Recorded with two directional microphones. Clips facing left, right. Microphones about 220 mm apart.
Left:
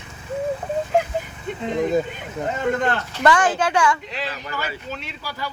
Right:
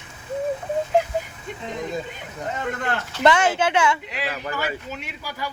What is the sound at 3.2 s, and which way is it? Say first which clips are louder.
A woman's voice: even; 20° right (ahead or behind).